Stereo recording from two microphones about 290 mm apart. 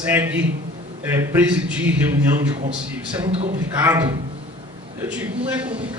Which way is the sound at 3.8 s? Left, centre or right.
Centre.